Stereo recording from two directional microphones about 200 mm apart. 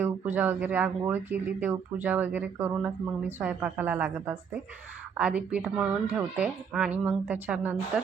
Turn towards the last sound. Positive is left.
turn(degrees=-10)  # may be behind; listen again after turning